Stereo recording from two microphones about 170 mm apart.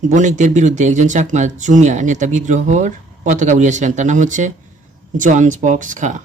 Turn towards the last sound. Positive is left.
turn(degrees=-50)  # may be behind; listen again after turning